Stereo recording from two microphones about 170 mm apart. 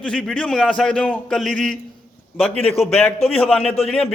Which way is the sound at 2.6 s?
35° left (ahead or behind).